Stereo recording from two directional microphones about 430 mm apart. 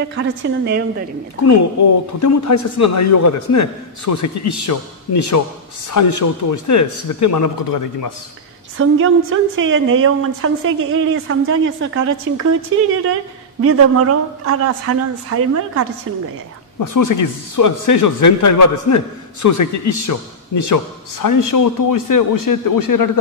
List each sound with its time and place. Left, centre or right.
0.1 s a woman's voice: right
2.1 s a man's voice: left
8.7 s a woman's voice: right
13.6 s speech: right
16.8 s speech: left